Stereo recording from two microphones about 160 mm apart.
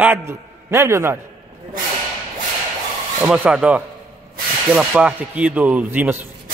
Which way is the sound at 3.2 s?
10° right (ahead or behind).